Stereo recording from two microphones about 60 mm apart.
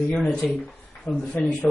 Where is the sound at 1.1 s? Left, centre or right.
Left.